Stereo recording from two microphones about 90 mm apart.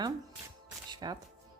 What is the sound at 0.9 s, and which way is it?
Music, 55° right (ahead or behind).